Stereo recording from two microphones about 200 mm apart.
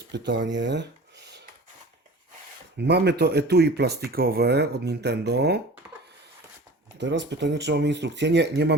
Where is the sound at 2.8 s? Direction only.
55° right (ahead or behind).